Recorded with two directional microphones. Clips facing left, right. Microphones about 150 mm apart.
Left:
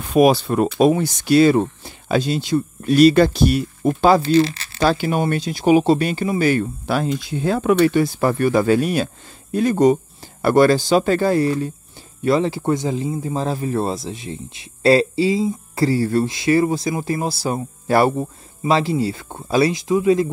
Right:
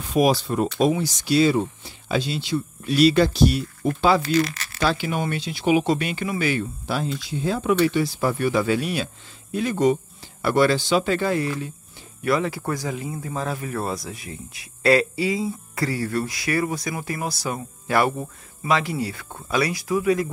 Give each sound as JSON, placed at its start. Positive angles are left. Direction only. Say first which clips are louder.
{"t": 0.0, "sound": "speech", "louder": "left 5 dB", "side_deg": 60}
{"t": 4.2, "sound": "speech", "louder": "left 6 dB", "side_deg": 25}
{"t": 4.8, "sound": "speech", "louder": "left 5 dB", "side_deg": 45}
{"t": 12.2, "sound": "speech", "louder": "left 5 dB", "side_deg": 25}